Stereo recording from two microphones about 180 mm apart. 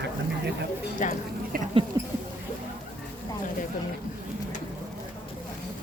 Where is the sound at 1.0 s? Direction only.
45° left (ahead or behind).